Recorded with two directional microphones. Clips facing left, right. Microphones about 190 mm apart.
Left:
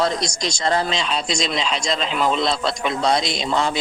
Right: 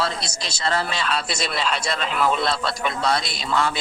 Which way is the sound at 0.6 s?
20° left (ahead or behind).